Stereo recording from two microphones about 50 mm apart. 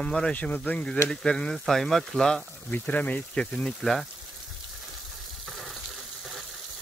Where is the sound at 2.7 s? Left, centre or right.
Left.